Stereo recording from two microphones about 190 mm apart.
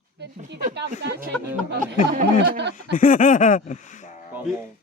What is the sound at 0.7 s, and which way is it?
Speech, 60° right (ahead or behind).